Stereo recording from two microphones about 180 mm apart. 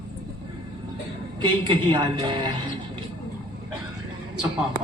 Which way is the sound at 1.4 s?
25° right (ahead or behind).